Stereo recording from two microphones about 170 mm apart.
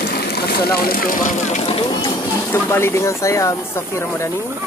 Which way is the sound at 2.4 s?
10° left (ahead or behind).